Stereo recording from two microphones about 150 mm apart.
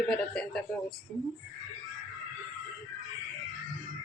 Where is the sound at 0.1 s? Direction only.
5° left (ahead or behind).